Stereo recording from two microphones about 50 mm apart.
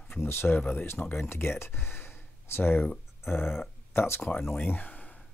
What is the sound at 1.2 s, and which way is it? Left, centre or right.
Speech, left.